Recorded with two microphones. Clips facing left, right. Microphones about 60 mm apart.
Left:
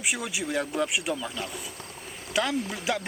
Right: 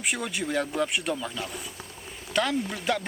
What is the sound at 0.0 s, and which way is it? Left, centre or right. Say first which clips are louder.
Speech: right 1 dB; centre.